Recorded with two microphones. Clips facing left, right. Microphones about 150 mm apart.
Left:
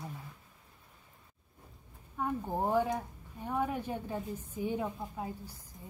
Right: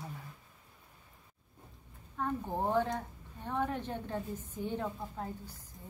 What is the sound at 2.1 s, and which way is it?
A woman's voice, 10° left (ahead or behind).